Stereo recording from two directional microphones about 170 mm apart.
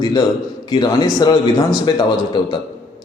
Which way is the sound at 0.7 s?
25° left (ahead or behind).